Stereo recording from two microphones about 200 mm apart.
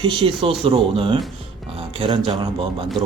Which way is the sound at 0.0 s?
25° right (ahead or behind).